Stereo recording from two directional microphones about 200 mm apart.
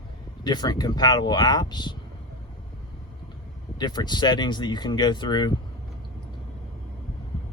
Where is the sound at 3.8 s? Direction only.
20° left (ahead or behind).